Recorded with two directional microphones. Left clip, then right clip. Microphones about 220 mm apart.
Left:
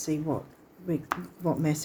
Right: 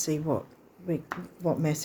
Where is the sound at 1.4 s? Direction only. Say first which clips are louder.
Right 2 dB; 10° right (ahead or behind).